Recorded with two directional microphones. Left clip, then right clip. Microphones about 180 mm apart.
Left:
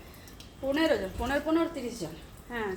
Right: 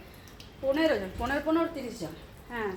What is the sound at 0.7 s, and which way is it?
A woman's voice, 15° right (ahead or behind).